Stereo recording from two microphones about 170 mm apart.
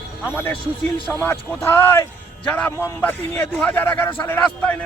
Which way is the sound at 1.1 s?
10° left (ahead or behind).